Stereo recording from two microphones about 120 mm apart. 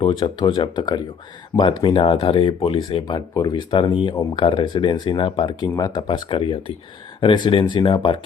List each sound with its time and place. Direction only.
0.0 s speech: 40° left (ahead or behind)